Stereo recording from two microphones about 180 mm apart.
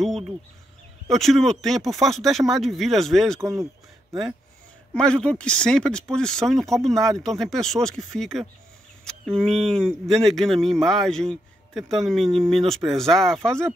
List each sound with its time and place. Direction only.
1.0 s speech: centre (ahead or behind)
3.3 s speech: 15° right (ahead or behind)
4.1 s speech: centre (ahead or behind)